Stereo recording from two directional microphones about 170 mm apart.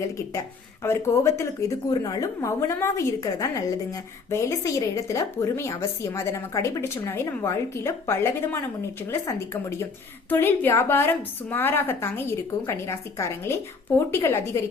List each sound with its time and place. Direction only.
0.3 s a woman's voice: 15° left (ahead or behind)